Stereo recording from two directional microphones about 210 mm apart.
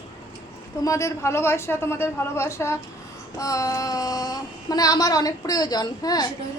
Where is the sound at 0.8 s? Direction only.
15° left (ahead or behind).